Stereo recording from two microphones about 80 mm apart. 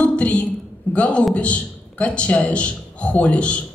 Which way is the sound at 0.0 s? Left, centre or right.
Centre.